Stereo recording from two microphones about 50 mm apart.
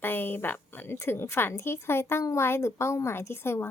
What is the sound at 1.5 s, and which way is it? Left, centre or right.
A woman's voice, left.